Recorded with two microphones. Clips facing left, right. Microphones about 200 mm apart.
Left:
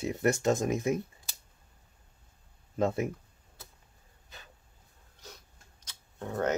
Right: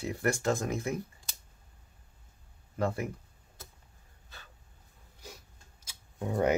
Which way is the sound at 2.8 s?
20° left (ahead or behind).